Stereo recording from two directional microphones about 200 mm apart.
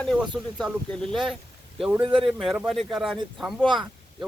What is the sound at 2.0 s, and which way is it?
Speech, 25° right (ahead or behind).